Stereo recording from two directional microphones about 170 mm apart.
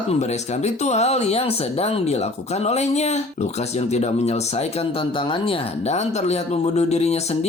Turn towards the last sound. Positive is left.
turn(degrees=40)  # may be behind; listen again after turning